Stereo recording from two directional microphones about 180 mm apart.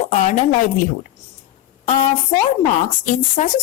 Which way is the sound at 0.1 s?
45° left (ahead or behind).